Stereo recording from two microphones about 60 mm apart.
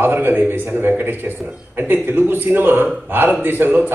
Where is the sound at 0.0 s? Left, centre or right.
Right.